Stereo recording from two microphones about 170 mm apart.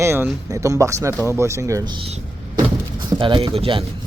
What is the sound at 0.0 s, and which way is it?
Speech, 15° right (ahead or behind).